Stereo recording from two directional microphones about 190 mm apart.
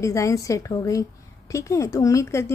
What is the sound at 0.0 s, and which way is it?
Speech, 15° left (ahead or behind).